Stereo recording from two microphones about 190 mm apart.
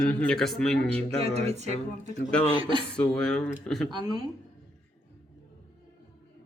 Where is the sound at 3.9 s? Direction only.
20° right (ahead or behind).